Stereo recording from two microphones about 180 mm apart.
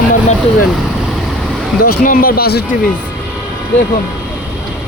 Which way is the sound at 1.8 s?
50° left (ahead or behind).